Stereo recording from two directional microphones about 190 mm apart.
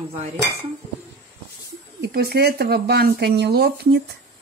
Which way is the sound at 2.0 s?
55° right (ahead or behind).